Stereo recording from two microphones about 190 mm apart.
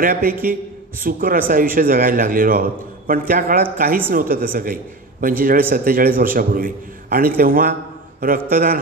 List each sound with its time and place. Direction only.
0.0 s a man's voice: 50° right (ahead or behind)